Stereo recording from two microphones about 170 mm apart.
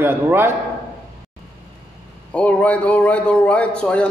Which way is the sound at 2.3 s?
10° left (ahead or behind).